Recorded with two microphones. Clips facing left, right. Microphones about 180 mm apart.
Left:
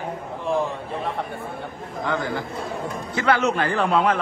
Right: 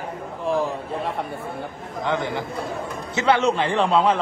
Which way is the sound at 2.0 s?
20° right (ahead or behind).